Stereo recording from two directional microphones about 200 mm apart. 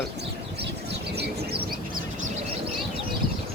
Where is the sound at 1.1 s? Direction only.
50° right (ahead or behind).